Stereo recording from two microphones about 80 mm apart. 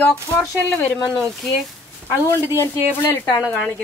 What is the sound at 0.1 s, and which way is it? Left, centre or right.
Speech, centre.